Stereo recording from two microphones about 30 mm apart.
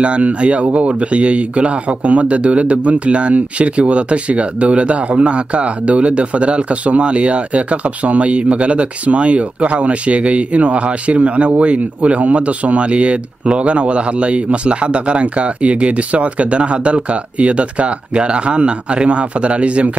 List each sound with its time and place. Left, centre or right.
0.0 s speech: right